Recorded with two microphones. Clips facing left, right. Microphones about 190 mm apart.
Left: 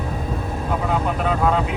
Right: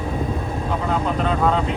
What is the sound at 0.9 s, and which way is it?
Speech, 5° left (ahead or behind).